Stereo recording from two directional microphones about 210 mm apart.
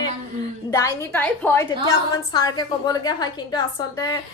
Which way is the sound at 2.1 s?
20° left (ahead or behind).